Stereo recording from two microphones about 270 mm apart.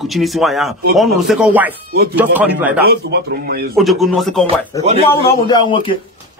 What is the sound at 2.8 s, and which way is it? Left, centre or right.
Speech, right.